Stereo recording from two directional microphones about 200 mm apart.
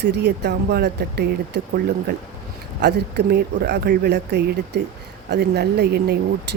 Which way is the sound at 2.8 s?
55° right (ahead or behind).